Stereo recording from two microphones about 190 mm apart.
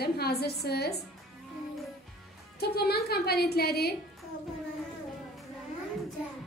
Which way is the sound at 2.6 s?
55° left (ahead or behind).